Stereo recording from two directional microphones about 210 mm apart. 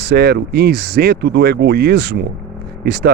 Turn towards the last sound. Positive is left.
turn(degrees=-50)  # may be behind; listen again after turning